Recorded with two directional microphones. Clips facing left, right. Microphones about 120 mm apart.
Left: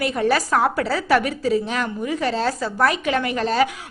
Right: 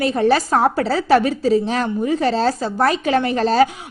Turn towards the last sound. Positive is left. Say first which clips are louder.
# right 4 dB
turn(degrees=-35)  # may be behind; listen again after turning